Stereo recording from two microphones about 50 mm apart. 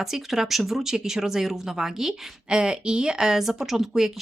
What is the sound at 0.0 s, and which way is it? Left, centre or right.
Speech, centre.